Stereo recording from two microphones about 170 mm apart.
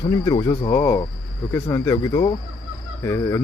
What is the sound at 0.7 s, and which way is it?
Speech, 10° left (ahead or behind).